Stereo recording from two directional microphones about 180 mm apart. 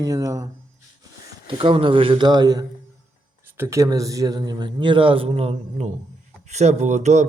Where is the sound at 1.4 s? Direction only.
30° right (ahead or behind).